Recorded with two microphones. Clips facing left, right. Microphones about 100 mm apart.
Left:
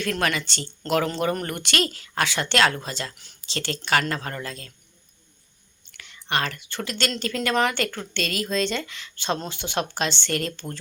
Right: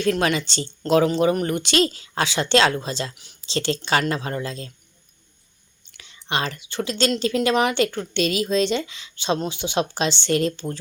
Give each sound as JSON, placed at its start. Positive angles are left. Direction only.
{"t": 0.1, "sound": "speech", "side_deg": -20}
{"t": 5.9, "sound": "whispering", "side_deg": -20}
{"t": 6.7, "sound": "speech", "side_deg": -20}